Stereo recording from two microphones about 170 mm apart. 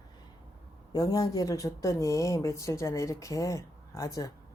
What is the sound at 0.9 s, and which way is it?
A woman's voice, 20° left (ahead or behind).